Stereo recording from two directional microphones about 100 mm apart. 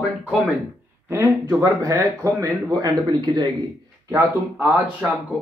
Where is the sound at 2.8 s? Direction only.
45° right (ahead or behind).